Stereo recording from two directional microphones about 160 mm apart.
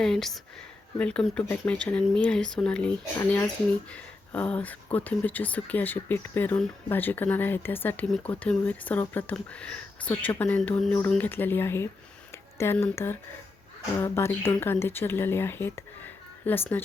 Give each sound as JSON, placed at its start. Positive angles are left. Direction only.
{"t": 0.0, "sound": "speech", "side_deg": 0}